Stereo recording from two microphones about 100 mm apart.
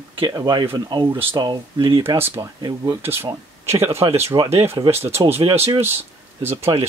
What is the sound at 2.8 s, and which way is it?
Speech, 25° right (ahead or behind).